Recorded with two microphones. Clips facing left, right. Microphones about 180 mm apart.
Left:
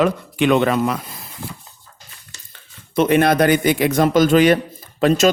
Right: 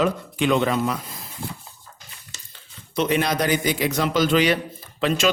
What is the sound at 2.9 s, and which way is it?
A man's voice, 55° left (ahead or behind).